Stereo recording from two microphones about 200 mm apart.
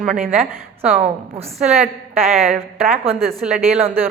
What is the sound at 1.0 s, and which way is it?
A woman's voice, 35° right (ahead or behind).